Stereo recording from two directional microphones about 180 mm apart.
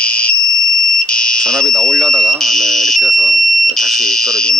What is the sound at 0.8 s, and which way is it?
Speech, 5° left (ahead or behind).